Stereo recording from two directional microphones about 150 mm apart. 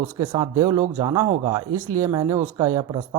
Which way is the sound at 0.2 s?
30° right (ahead or behind).